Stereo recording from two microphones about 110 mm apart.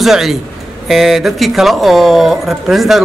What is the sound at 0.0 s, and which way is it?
A man's voice, 5° right (ahead or behind).